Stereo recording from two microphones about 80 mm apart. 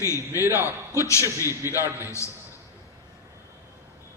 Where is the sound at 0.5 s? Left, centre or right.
Left.